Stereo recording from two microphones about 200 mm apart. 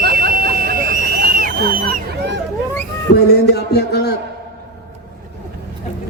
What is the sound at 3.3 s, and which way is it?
Speech, 55° left (ahead or behind).